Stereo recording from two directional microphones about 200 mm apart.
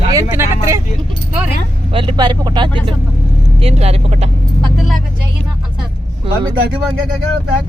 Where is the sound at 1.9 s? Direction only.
25° right (ahead or behind).